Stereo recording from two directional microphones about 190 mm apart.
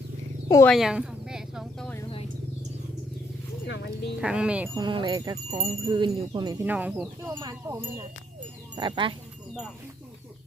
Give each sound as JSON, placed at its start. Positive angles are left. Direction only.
{"t": 0.4, "sound": "speech", "side_deg": 20}
{"t": 0.7, "sound": "a sound", "side_deg": 0}
{"t": 4.2, "sound": "speech", "side_deg": -5}
{"t": 4.7, "sound": "wind chime", "side_deg": -25}
{"t": 6.7, "sound": "speech", "side_deg": -10}
{"t": 7.3, "sound": "wind chime", "side_deg": -15}
{"t": 8.7, "sound": "speech", "side_deg": -25}